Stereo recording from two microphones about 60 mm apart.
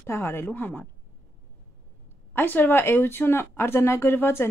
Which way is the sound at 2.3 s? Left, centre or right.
Left.